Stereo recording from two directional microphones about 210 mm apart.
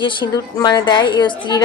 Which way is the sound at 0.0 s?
20° left (ahead or behind).